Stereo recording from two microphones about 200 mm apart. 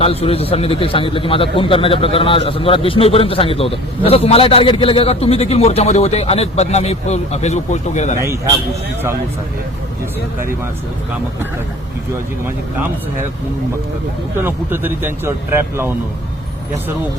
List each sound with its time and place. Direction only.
0.0 s a man's voice: 30° left (ahead or behind)
14.4 s speech: 10° right (ahead or behind)